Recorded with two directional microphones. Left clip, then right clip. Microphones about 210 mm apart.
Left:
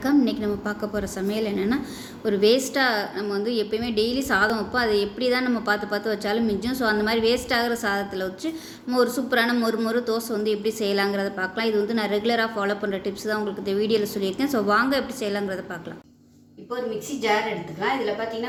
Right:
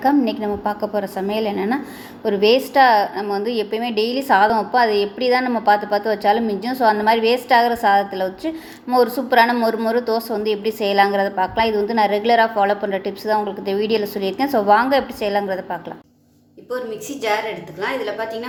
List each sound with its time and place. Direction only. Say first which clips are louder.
0.3 s a woman's voice: right 5 dB; 5° right (ahead or behind)